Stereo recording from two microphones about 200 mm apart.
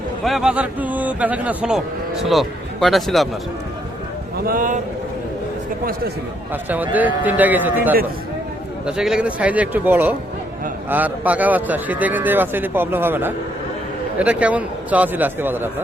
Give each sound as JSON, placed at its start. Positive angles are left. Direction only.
{"t": 0.3, "sound": "speech", "side_deg": -5}
{"t": 4.4, "sound": "speech", "side_deg": -45}
{"t": 5.8, "sound": "speech", "side_deg": -45}
{"t": 6.5, "sound": "a man's voice", "side_deg": -10}